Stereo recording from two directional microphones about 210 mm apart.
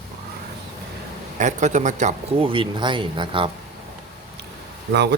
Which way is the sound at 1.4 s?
35° right (ahead or behind).